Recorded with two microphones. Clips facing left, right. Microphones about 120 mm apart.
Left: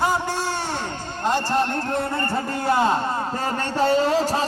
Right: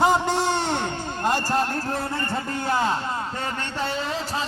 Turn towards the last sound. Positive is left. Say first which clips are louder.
# left 8 dB
turn(degrees=40)  # may be behind; listen again after turning